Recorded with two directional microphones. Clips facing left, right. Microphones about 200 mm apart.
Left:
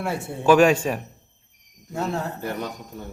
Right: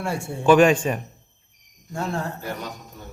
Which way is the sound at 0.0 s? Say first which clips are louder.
Even; centre (ahead or behind).